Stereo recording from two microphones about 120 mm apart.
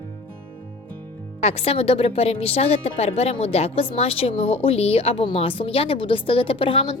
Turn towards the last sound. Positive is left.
turn(degrees=45)  # may be behind; listen again after turning